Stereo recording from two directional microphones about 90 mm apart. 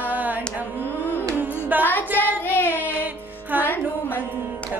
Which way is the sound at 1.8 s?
20° left (ahead or behind).